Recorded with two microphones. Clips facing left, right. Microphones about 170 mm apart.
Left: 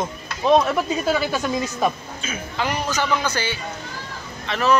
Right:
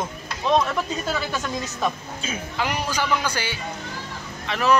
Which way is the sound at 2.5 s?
10° right (ahead or behind).